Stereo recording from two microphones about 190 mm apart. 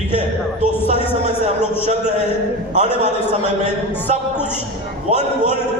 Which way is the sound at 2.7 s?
35° right (ahead or behind).